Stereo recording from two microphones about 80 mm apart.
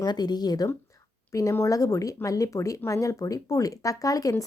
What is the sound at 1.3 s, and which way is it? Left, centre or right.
A woman's voice, left.